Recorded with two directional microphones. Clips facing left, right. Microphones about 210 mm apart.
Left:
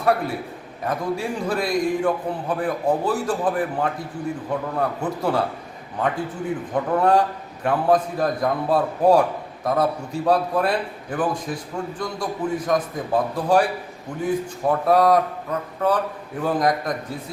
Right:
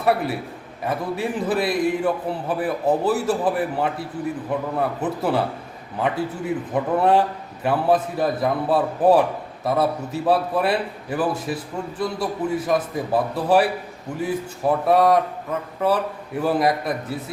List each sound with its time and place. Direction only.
0.0 s a man's voice: 5° right (ahead or behind)